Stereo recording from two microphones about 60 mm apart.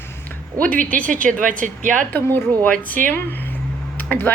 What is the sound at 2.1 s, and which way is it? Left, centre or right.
Speech, left.